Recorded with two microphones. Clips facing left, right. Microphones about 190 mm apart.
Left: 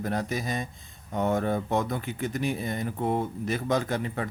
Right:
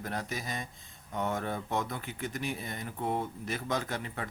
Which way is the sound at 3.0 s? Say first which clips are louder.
Left 4 dB; 45° left (ahead or behind).